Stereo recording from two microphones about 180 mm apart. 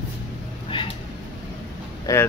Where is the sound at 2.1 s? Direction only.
20° left (ahead or behind).